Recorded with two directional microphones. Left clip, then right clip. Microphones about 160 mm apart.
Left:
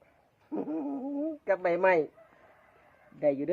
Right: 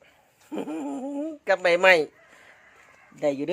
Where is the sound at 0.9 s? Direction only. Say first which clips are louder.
Right 2 dB; 45° right (ahead or behind).